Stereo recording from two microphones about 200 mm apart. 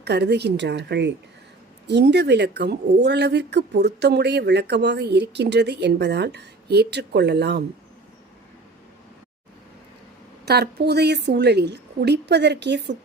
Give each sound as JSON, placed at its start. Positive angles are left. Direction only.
{"t": 0.0, "sound": "speech", "side_deg": -55}
{"t": 10.4, "sound": "speech", "side_deg": -55}